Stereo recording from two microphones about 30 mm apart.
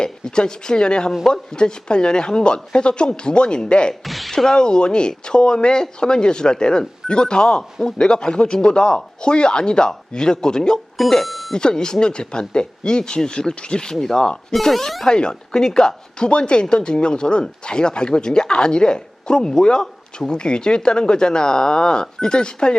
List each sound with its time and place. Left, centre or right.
0.0 s speech: left
4.0 s music: centre
4.4 s speech: left
11.3 s doorbell: centre
11.5 s speech: left
13.9 s speech: centre
15.1 s speech: left